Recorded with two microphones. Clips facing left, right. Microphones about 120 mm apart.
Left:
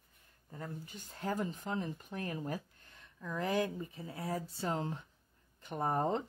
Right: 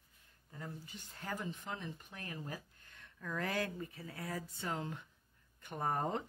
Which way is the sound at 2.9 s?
20° left (ahead or behind).